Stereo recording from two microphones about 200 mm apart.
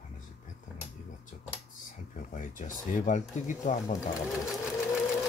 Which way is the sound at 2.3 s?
40° left (ahead or behind).